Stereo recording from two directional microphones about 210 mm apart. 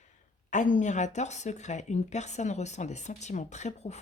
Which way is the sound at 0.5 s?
35° left (ahead or behind).